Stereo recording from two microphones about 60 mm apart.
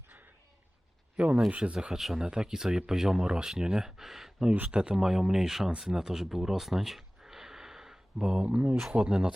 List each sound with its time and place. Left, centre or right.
1.1 s speech: right
2.0 s speech: centre
4.5 s speech: right
4.8 s speech: centre